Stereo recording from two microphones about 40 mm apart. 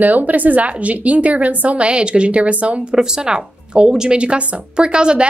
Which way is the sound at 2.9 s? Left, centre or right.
Centre.